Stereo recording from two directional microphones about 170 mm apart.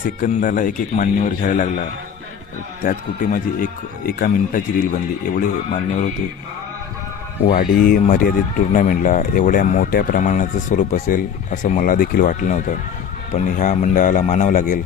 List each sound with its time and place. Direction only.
0.0 s speech: 50° left (ahead or behind)
7.4 s speech: 60° left (ahead or behind)